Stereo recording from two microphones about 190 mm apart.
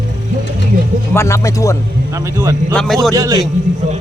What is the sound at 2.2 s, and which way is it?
Speech, 15° right (ahead or behind).